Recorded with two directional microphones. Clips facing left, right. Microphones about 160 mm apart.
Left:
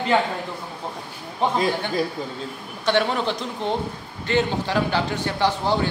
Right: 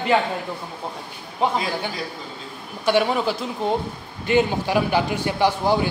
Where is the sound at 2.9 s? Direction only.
10° right (ahead or behind).